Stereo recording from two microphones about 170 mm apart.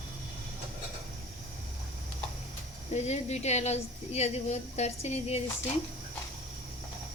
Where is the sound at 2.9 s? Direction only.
40° left (ahead or behind).